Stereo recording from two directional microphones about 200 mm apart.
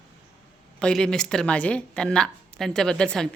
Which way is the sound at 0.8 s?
5° left (ahead or behind).